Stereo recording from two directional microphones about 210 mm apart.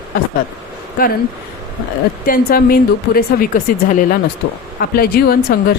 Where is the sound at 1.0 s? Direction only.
40° left (ahead or behind).